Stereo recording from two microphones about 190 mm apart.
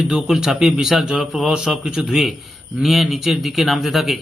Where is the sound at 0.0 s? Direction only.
Centre (ahead or behind).